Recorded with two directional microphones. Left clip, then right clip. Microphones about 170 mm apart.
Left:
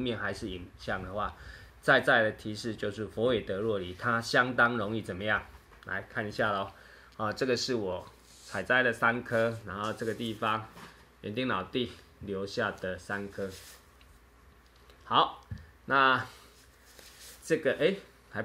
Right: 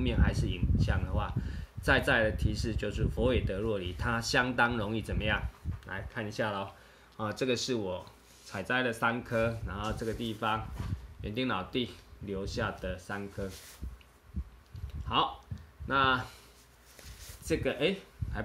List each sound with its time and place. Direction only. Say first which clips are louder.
0.0 s speech: left 1 dB; 20° right (ahead or behind)
7.2 s speech: left 2 dB; 35° right (ahead or behind)
15.9 s speech: left 3 dB; 30° right (ahead or behind)
17.5 s speech: left 3 dB; 30° right (ahead or behind)